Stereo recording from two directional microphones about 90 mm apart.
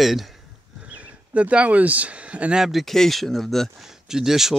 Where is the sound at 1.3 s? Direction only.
15° right (ahead or behind).